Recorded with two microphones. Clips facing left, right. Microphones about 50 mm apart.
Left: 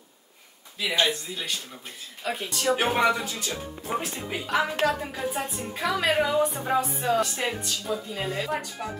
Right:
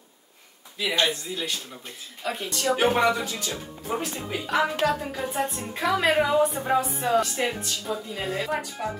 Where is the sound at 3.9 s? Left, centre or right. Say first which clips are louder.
Right 1 dB; left.